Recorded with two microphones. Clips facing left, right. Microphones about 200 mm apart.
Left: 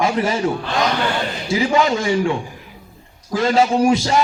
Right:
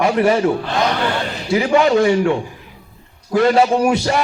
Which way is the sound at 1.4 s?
60° right (ahead or behind).